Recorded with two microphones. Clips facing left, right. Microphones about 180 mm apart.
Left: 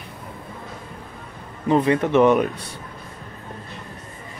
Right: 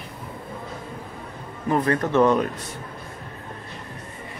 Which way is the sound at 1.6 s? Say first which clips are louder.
Left 4 dB; 20° left (ahead or behind).